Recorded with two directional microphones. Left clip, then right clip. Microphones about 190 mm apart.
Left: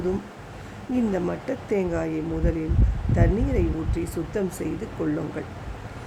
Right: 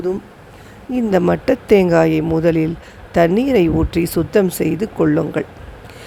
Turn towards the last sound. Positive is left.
turn(degrees=-45)  # may be behind; listen again after turning